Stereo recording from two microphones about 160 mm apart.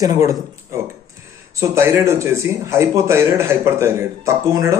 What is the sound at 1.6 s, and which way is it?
Speech, 15° right (ahead or behind).